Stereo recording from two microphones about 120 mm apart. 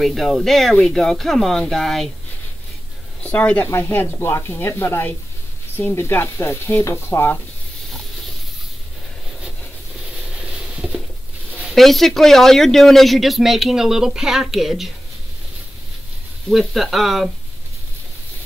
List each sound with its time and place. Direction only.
0.0 s speech: centre (ahead or behind)
3.3 s speech: 10° left (ahead or behind)
11.7 s speech: centre (ahead or behind)
16.4 s speech: centre (ahead or behind)